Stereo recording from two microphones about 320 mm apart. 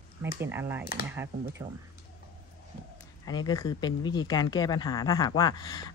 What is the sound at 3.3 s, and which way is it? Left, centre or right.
Speech, centre.